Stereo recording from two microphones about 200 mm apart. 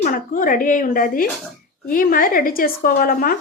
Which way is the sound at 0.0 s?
45° left (ahead or behind).